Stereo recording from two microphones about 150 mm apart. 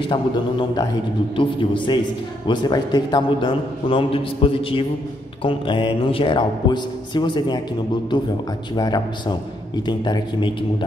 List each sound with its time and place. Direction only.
0.0 s speech: 35° left (ahead or behind)